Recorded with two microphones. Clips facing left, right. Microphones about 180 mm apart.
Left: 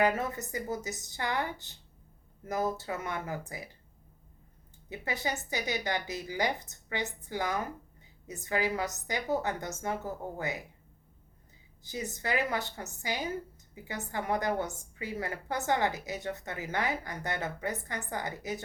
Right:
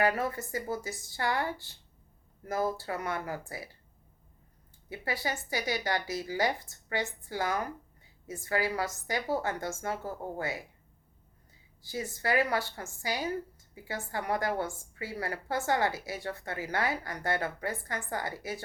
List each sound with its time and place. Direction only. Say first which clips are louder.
0.0 s a woman's voice: even; 20° left (ahead or behind)
4.9 s a woman's voice: even; 20° left (ahead or behind)
11.8 s a woman's voice: right 1 dB; 20° left (ahead or behind)